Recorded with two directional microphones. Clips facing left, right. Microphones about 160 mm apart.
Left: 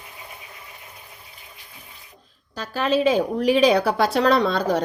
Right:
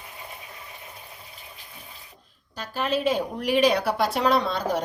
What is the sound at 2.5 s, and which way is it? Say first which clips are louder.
A woman's voice: left 5 dB; 90° left.